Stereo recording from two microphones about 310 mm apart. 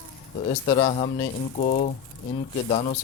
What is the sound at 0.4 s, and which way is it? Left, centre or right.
Speech, centre.